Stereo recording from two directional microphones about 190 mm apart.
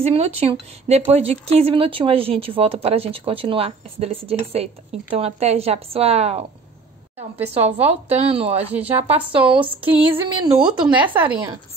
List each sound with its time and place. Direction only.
0.0 s speech: 35° right (ahead or behind)
7.5 s speech: 30° right (ahead or behind)
10.9 s speech: 5° right (ahead or behind)